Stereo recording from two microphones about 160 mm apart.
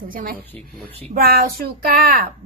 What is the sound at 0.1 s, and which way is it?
Speech, 60° right (ahead or behind).